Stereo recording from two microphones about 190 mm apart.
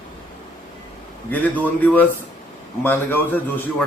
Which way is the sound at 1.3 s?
10° left (ahead or behind).